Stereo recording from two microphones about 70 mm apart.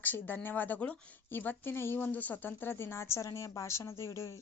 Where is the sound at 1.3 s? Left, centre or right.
Left.